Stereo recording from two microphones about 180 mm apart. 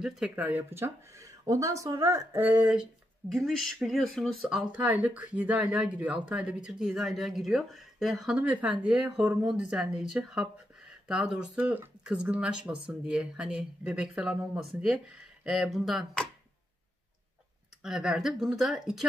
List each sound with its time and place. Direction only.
0.0 s speech: 5° right (ahead or behind)
17.8 s speech: 5° right (ahead or behind)